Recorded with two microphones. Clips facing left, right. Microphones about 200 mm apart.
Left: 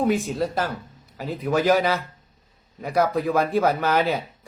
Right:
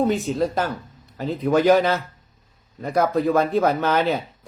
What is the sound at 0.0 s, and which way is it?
Speech, 5° left (ahead or behind).